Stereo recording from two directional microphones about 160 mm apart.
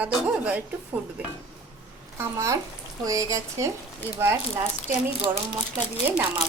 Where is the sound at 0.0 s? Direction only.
10° right (ahead or behind).